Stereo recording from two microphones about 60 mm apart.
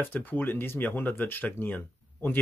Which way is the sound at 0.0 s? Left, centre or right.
Left.